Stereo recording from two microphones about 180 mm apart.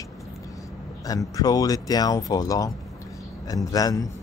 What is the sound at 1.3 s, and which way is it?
Speech, 20° left (ahead or behind).